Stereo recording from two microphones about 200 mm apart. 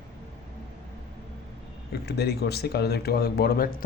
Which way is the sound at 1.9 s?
50° left (ahead or behind).